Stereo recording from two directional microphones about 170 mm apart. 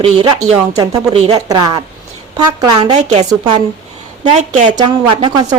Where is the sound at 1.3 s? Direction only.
20° right (ahead or behind).